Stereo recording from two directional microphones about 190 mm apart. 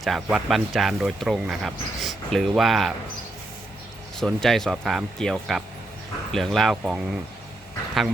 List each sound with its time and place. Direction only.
0.0 s speech: centre (ahead or behind)
4.2 s speech: centre (ahead or behind)